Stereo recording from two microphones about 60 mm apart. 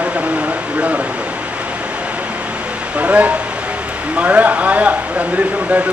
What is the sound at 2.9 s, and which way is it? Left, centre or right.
Speech, centre.